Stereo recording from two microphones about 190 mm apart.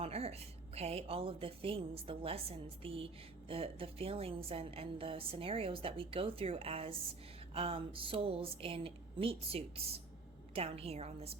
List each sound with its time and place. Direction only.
0.0 s a woman's voice: 35° right (ahead or behind)